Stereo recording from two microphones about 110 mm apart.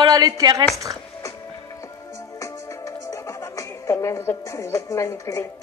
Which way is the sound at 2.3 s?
30° left (ahead or behind).